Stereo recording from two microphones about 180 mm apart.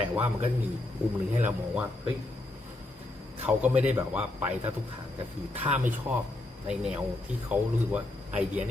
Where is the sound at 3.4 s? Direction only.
5° right (ahead or behind).